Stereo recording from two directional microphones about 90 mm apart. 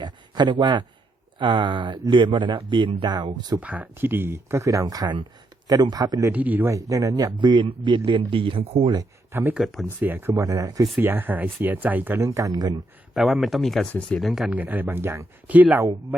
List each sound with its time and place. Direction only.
0.0 s a sound: 55° right (ahead or behind)
0.5 s speech: 55° right (ahead or behind)
3.6 s speech: 15° right (ahead or behind); by 6.3 s 40° right (ahead or behind)
6.3 s speech: 20° right (ahead or behind)
6.7 s speech: 40° right (ahead or behind)
7.3 s speech: 55° right (ahead or behind)
8.3 s speech: 75° right (ahead or behind)
9.3 s speech: 25° right (ahead or behind)
10.4 s speech: 40° right (ahead or behind)
11.0 s speech: 20° right (ahead or behind)
12.2 s speech: 35° right (ahead or behind)
13.1 s speech: centre (ahead or behind)
14.5 s speech: 20° right (ahead or behind)
15.4 s speech: 15° right (ahead or behind)